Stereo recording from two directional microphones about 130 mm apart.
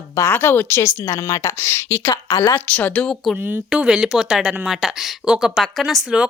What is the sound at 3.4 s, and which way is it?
Speech, 10° right (ahead or behind).